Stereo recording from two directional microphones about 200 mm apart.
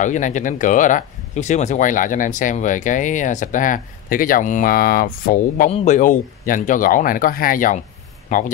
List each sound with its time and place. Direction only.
0.0 s speech: 40° left (ahead or behind)